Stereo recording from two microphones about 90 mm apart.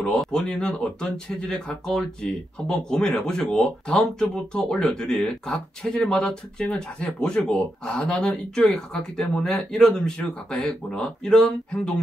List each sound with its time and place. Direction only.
0.0 s speech: 5° left (ahead or behind)